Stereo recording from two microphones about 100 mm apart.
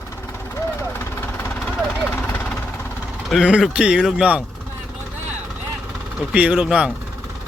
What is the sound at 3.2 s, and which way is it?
Speech, 5° right (ahead or behind).